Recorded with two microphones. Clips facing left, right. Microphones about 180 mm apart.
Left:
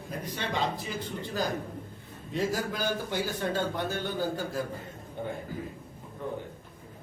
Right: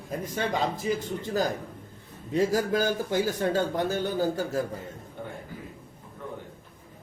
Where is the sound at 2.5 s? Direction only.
45° right (ahead or behind).